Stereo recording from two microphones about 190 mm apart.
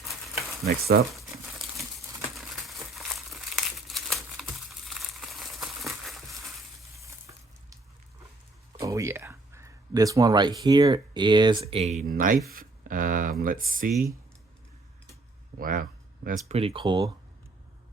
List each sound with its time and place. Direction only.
0.6 s speech: 55° right (ahead or behind)
1.1 s crumpling: centre (ahead or behind)
8.8 s a sound: 15° right (ahead or behind)
10.6 s speech: 20° right (ahead or behind); by 12.4 s 45° right (ahead or behind)
12.5 s a sound: 45° right (ahead or behind)
13.4 s speech: 45° right (ahead or behind)
15.5 s speech: 45° right (ahead or behind)
16.6 s speech: 30° right (ahead or behind)